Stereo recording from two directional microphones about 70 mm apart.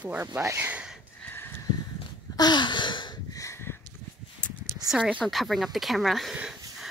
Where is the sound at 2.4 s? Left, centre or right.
Left.